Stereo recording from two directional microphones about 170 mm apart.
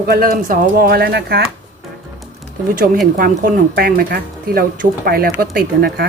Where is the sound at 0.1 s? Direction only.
55° right (ahead or behind); by 1.5 s 70° right (ahead or behind).